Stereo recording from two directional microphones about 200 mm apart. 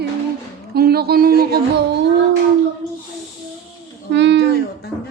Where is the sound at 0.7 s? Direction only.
50° right (ahead or behind).